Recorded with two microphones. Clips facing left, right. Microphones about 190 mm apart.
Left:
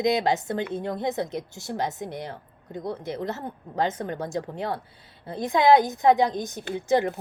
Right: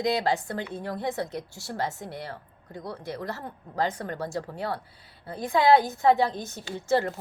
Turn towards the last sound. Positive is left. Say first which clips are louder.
# left 2 dB
turn(degrees=15)  # may be behind; listen again after turning